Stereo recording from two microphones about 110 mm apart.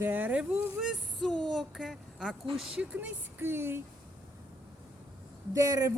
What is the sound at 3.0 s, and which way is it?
Speech, 20° right (ahead or behind).